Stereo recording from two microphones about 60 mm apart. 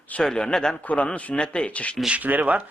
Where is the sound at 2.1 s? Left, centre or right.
Right.